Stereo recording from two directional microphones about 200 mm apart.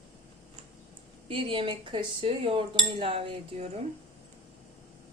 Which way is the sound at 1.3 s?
25° right (ahead or behind).